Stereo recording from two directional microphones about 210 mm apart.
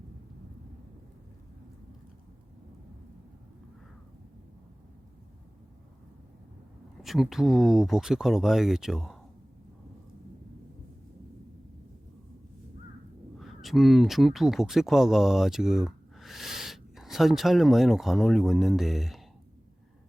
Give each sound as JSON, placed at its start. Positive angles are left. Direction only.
{"t": 7.0, "sound": "speech", "side_deg": 0}
{"t": 13.4, "sound": "speech", "side_deg": 0}